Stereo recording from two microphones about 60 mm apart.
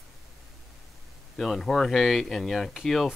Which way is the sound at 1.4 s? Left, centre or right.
Centre.